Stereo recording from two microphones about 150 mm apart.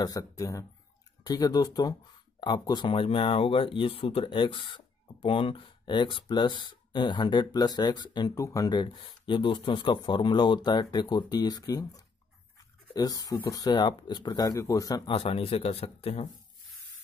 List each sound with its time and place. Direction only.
0.0 s speech: 25° left (ahead or behind)
15.0 s speech: 35° left (ahead or behind)